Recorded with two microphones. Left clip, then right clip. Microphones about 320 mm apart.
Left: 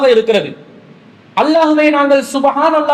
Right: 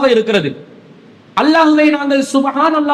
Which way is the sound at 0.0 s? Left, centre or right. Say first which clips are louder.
Left 2 dB; right.